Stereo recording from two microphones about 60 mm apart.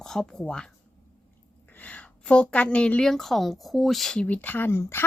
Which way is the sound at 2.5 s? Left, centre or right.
Left.